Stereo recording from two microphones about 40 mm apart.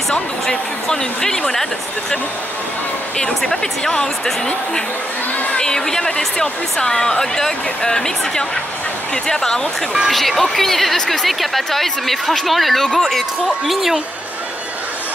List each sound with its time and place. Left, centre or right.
0.1 s a woman's voice: centre
3.2 s a woman's voice: centre
5.6 s a woman's voice: centre
10.0 s a woman's voice: centre
13.7 s speech: centre